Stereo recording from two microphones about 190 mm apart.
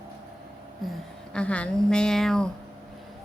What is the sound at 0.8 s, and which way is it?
A woman's voice, centre (ahead or behind).